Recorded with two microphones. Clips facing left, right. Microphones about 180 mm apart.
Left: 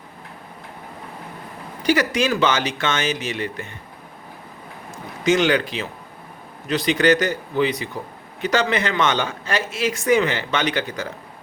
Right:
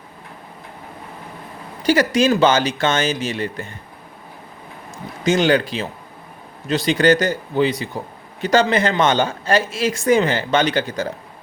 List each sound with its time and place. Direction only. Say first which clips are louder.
1.9 s speech: right 4 dB; 30° right (ahead or behind)
5.2 s speech: right 2 dB; 35° right (ahead or behind)